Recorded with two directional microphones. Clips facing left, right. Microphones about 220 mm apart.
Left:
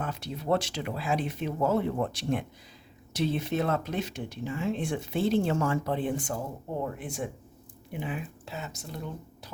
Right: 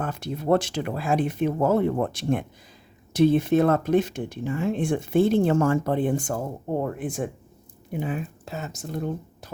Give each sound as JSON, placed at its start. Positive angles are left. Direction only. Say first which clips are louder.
{"t": 0.0, "sound": "speech", "louder": "right 5 dB", "side_deg": -50}